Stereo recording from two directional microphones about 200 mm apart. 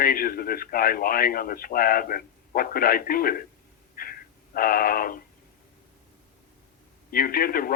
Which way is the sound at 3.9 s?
45° left (ahead or behind).